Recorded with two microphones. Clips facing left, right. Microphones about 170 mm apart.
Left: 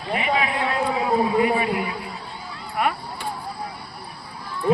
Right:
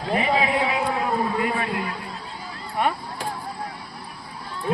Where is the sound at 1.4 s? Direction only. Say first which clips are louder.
Left 5 dB; 20° left (ahead or behind).